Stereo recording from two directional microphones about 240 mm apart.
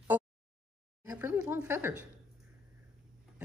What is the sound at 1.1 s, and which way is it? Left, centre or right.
Speech, centre.